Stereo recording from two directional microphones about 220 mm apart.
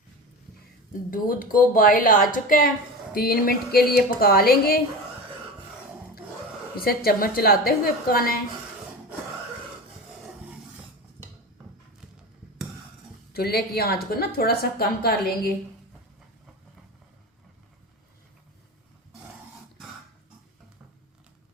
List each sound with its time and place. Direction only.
1.1 s a woman's voice: 40° left (ahead or behind)
6.7 s a woman's voice: 45° left (ahead or behind)
13.3 s a woman's voice: 45° left (ahead or behind)